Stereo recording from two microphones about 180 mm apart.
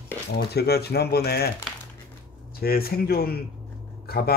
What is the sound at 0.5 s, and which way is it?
Speech, 65° left (ahead or behind).